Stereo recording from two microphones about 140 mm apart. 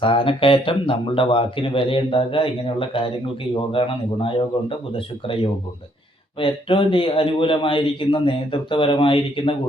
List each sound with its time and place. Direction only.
0.0 s a man's voice: 40° left (ahead or behind)